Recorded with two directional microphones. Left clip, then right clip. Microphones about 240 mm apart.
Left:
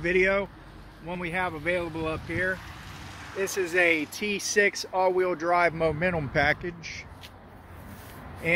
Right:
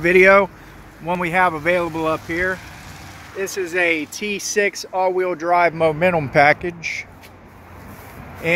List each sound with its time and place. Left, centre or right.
0.0 s speech: right